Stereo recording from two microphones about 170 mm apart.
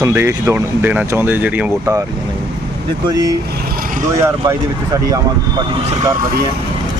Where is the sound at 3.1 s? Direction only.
20° right (ahead or behind).